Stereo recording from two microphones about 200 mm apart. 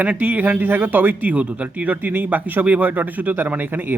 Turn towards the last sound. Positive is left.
turn(degrees=-10)  # may be behind; listen again after turning